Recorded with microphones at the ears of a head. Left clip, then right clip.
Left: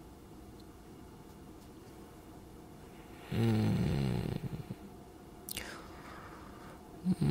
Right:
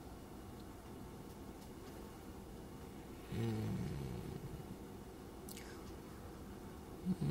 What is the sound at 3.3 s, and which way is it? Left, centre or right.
Snoring, left.